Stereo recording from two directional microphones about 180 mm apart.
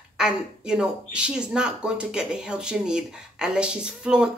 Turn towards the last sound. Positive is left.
turn(degrees=-5)  # may be behind; listen again after turning